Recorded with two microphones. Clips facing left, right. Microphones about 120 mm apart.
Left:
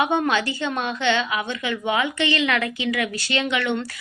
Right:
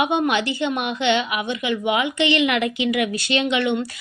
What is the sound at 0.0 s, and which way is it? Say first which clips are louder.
A woman's voice: right 1 dB; 20° right (ahead or behind).